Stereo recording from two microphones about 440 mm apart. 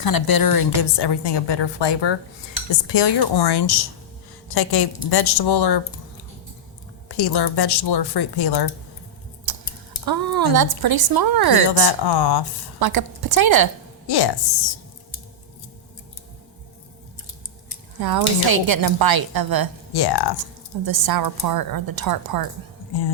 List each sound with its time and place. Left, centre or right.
0.0 s a woman's voice: left
7.2 s a woman's voice: left
9.5 s a sound: right
10.1 s a woman's voice: right
11.8 s a woman's voice: left
12.8 s a woman's voice: right
14.1 s a woman's voice: left
18.0 s a woman's voice: right
19.9 s a woman's voice: left
20.8 s a woman's voice: right